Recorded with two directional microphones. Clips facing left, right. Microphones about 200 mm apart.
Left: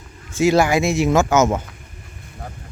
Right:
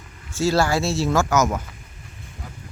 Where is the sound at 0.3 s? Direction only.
20° left (ahead or behind).